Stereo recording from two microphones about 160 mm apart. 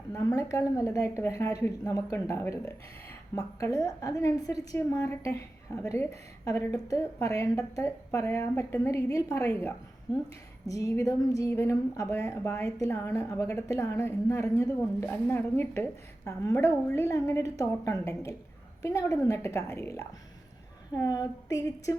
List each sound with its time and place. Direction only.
0.1 s a woman's voice: 20° left (ahead or behind)